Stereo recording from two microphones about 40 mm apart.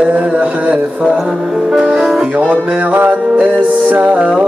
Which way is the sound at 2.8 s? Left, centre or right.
Right.